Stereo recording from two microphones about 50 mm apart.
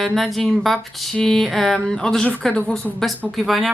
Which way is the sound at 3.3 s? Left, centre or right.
Centre.